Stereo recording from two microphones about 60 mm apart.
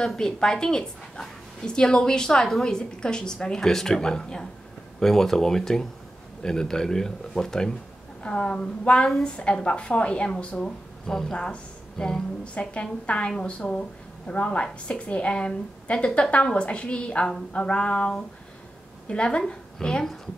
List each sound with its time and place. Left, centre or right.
0.0 s a woman's voice: centre